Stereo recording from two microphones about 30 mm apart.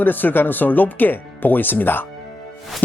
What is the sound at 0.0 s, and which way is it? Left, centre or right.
A man's voice, left.